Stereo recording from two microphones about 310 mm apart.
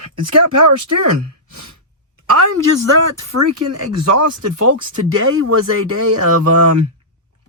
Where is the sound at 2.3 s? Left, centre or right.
Right.